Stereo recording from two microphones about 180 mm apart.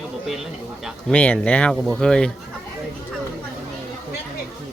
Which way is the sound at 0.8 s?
5° left (ahead or behind).